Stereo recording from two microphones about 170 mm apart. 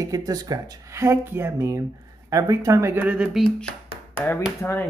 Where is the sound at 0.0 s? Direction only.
20° right (ahead or behind).